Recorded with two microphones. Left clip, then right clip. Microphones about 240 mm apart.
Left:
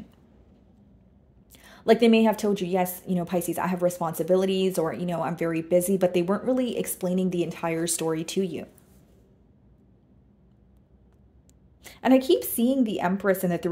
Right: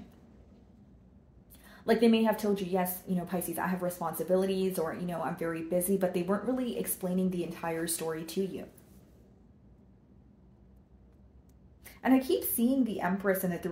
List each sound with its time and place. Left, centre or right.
1.6 s a woman's voice: left
11.8 s a woman's voice: left